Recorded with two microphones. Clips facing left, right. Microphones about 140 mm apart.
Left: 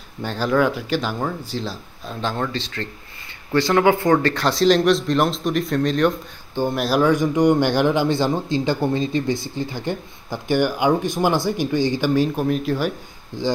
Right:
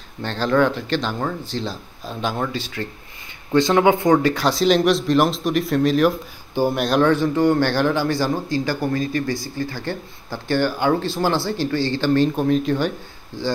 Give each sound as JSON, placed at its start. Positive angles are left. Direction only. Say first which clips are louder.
{"t": 0.2, "sound": "speech", "louder": "right 1 dB", "side_deg": 10}
{"t": 2.2, "sound": "speech", "louder": "even", "side_deg": -10}
{"t": 13.3, "sound": "speech", "louder": "left 2 dB", "side_deg": 15}